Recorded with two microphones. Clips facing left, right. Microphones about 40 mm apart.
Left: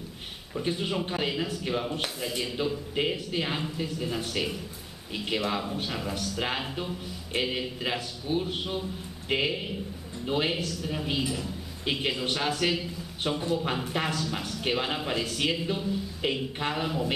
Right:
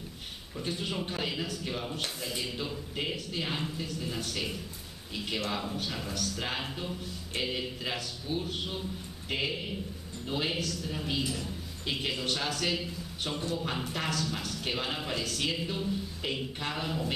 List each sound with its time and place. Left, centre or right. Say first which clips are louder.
0.6 s a man's voice: left 5 dB; centre